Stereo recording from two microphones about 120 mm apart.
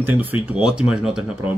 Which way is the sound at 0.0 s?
15° right (ahead or behind).